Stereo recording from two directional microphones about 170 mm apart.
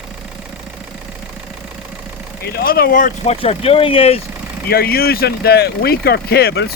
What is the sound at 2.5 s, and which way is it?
Speech, 60° left (ahead or behind).